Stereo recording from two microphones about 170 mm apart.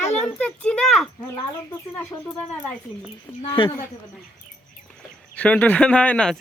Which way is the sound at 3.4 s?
30° left (ahead or behind).